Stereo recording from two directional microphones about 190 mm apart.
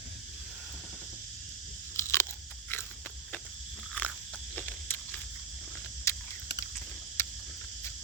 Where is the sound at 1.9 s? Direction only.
15° left (ahead or behind).